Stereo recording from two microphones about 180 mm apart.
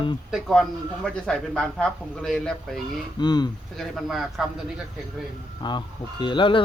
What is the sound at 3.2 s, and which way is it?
Speech, 25° left (ahead or behind).